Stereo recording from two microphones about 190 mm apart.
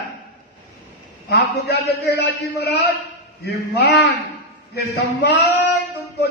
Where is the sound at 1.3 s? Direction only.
60° left (ahead or behind).